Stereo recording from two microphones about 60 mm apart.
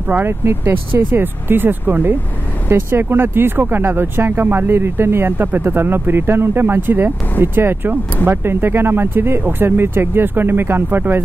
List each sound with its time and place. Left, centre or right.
0.1 s speech: right
1.2 s speech: right